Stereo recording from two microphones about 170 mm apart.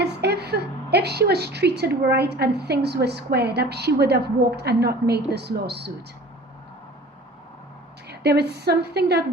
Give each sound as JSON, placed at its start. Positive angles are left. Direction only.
{"t": 0.0, "sound": "a woman's voice", "side_deg": -75}
{"t": 8.0, "sound": "a woman's voice", "side_deg": -70}